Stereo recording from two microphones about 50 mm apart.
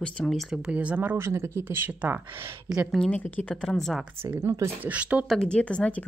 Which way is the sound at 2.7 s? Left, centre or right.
Centre.